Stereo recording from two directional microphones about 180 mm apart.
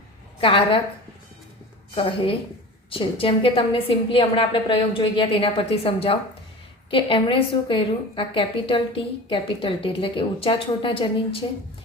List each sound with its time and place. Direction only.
0.3 s a woman's voice: 30° left (ahead or behind)
2.0 s a woman's voice: 30° left (ahead or behind)